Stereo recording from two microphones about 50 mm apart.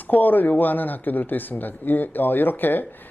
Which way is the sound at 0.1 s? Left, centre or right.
Left.